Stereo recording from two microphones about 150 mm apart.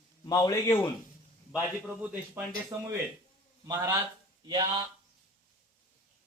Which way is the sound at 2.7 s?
25° right (ahead or behind).